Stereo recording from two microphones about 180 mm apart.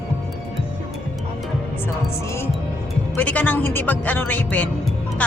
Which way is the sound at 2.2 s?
15° left (ahead or behind).